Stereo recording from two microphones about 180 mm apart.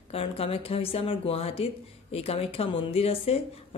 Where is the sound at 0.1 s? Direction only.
30° left (ahead or behind).